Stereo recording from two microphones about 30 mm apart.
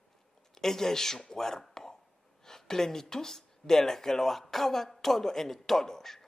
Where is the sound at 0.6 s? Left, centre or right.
Centre.